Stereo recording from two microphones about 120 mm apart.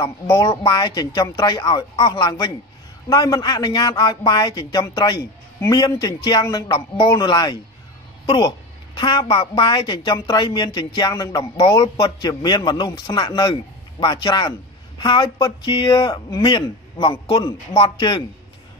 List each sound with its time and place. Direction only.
0.0 s a woman's voice: 30° left (ahead or behind)